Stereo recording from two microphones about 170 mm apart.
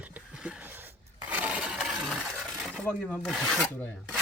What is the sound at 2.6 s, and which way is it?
Speech, centre (ahead or behind).